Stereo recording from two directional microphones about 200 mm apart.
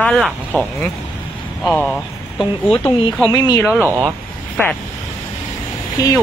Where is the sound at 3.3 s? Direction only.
20° left (ahead or behind).